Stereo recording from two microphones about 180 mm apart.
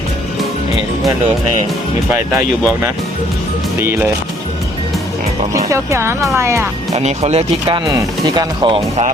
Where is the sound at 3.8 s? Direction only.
10° right (ahead or behind).